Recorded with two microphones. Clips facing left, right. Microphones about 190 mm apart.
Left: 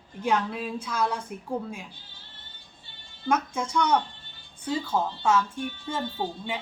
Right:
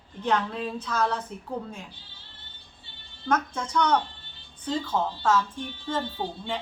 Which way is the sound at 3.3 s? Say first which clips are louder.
Even; 10° left (ahead or behind).